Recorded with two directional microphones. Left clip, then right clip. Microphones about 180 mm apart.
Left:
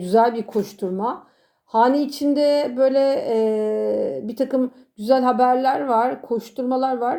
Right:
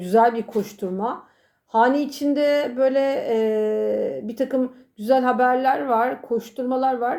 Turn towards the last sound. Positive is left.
turn(degrees=30)  # may be behind; listen again after turning